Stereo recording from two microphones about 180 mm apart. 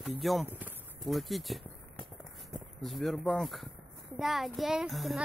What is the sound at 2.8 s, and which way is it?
A child's voice, centre (ahead or behind).